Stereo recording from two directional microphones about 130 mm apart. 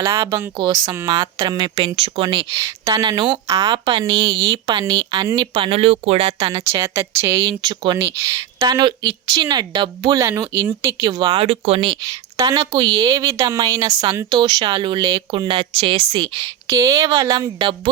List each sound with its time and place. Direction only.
0.0 s speech: 20° right (ahead or behind); by 2.5 s 40° right (ahead or behind)
2.8 s speech: 30° right (ahead or behind); by 6.5 s 45° right (ahead or behind)
6.5 s speech: 20° right (ahead or behind)
7.4 s speech: 35° right (ahead or behind)
10.2 s speech: 25° right (ahead or behind)
11.3 s speech: 50° right (ahead or behind)
12.4 s speech: 25° right (ahead or behind)
16.6 s speech: 25° right (ahead or behind)